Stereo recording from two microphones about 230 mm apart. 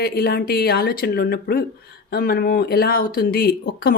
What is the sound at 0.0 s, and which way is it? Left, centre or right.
Speech, left.